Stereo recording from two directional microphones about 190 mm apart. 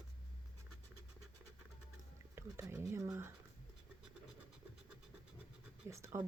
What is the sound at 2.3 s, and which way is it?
Speech, 15° right (ahead or behind).